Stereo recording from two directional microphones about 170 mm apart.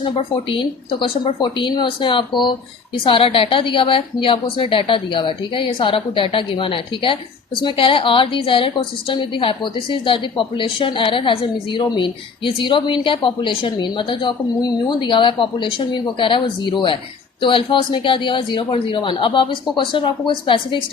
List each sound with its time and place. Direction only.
0.0 s a woman's voice: 30° left (ahead or behind)